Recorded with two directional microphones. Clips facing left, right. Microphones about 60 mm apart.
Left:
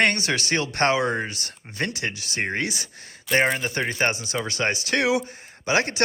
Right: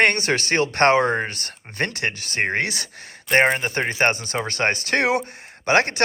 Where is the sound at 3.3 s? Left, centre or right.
Right.